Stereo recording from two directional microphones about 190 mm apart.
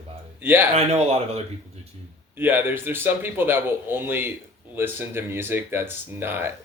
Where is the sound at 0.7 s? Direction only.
35° right (ahead or behind).